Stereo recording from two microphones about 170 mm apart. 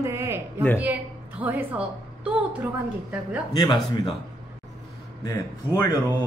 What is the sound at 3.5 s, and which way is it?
Speech, 25° left (ahead or behind).